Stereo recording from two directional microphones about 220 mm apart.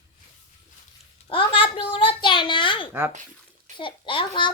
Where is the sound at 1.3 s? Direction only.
25° left (ahead or behind).